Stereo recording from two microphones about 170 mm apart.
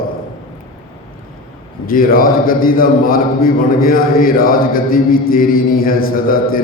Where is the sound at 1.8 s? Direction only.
60° left (ahead or behind).